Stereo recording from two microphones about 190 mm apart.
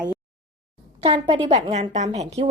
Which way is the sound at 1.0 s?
25° right (ahead or behind).